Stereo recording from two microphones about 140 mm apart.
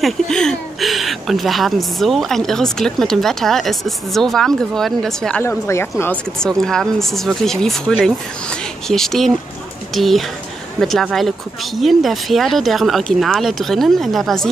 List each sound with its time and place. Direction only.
0.0 s speech: 5° left (ahead or behind)
5.4 s a woman's voice: 20° left (ahead or behind)
6.4 s speech: 5° left (ahead or behind)